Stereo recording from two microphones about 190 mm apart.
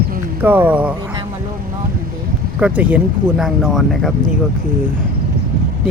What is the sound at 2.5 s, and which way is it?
Speech, 5° right (ahead or behind).